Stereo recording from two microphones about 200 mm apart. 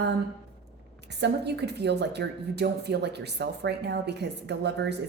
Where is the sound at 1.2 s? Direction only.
55° right (ahead or behind).